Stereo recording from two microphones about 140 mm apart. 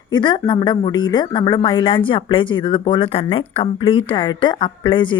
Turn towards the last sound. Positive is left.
turn(degrees=35)  # may be behind; listen again after turning